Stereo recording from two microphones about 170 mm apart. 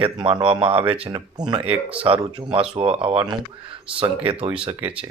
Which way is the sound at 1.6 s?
5° right (ahead or behind).